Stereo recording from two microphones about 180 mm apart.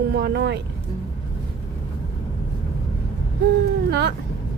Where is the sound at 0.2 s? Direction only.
65° right (ahead or behind).